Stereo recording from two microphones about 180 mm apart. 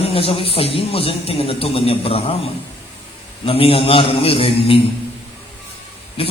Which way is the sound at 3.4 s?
30° left (ahead or behind).